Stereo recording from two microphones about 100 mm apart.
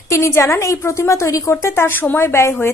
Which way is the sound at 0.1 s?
30° left (ahead or behind).